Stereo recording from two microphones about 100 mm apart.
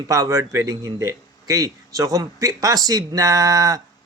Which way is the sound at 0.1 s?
40° right (ahead or behind).